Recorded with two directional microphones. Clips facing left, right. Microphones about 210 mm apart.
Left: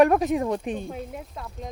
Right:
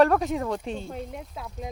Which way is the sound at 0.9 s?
Centre (ahead or behind).